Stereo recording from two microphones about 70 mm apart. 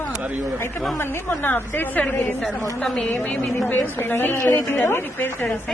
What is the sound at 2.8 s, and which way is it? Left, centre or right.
Speech, centre.